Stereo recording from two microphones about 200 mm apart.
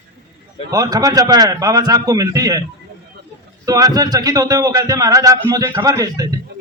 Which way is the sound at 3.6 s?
20° right (ahead or behind).